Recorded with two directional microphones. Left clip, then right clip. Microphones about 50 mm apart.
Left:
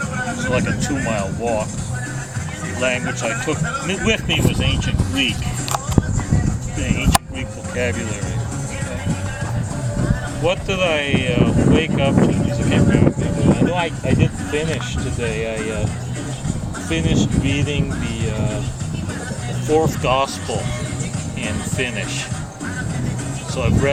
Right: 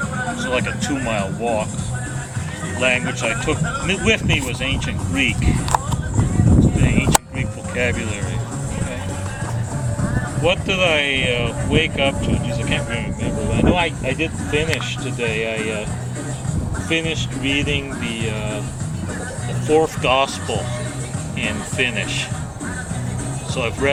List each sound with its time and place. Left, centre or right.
0.4 s speech: centre
3.1 s speech: centre
6.7 s speech: centre
10.4 s speech: centre
16.9 s speech: centre
19.6 s speech: centre
23.6 s speech: centre